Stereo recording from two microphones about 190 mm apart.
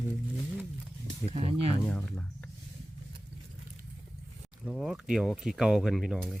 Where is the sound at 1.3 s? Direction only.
30° right (ahead or behind).